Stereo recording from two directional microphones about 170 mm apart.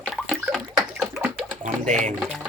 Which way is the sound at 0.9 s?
Centre (ahead or behind).